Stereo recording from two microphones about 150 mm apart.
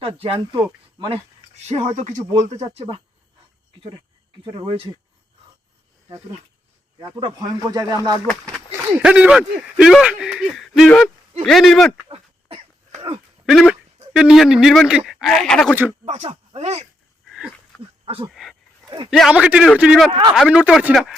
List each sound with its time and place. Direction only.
0.0 s speech: 40° right (ahead or behind)
1.5 s speech: 50° right (ahead or behind)
7.0 s speech: 30° right (ahead or behind)
8.7 s speech: 10° right (ahead or behind)
12.0 s throat clearing: 40° right (ahead or behind)
13.4 s speech: centre (ahead or behind)
16.0 s speech: 45° right (ahead or behind)
17.2 s a sound: centre (ahead or behind)
18.0 s a sound: 40° right (ahead or behind)
18.3 s speech: centre (ahead or behind)
18.9 s a man's voice: 30° right (ahead or behind)
19.1 s speech: 5° right (ahead or behind)